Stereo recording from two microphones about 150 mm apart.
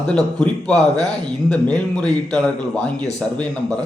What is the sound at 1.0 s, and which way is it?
Speech, 5° left (ahead or behind).